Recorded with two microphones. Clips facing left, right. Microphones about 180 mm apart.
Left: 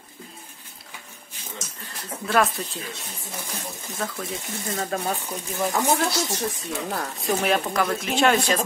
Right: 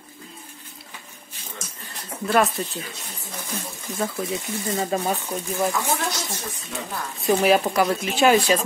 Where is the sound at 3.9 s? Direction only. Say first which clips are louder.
Right 5 dB; 25° right (ahead or behind).